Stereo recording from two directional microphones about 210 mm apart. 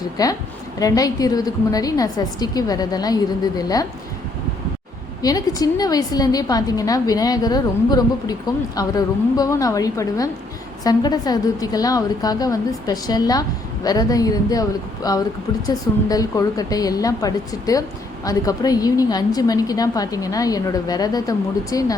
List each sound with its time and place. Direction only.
0.2 s a woman's voice: 15° left (ahead or behind)
5.2 s a woman's voice: 15° left (ahead or behind)